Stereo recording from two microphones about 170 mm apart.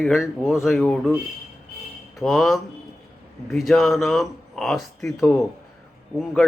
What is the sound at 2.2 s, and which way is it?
Speech, centre (ahead or behind).